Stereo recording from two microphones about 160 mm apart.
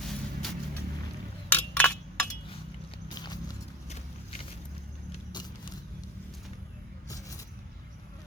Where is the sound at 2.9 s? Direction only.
25° left (ahead or behind).